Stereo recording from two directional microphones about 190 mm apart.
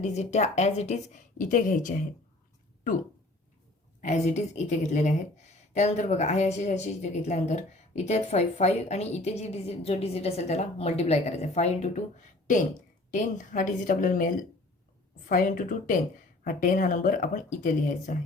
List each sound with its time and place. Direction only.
0.0 s speech: 35° left (ahead or behind)
4.0 s speech: 35° left (ahead or behind)
13.1 s speech: 40° left (ahead or behind)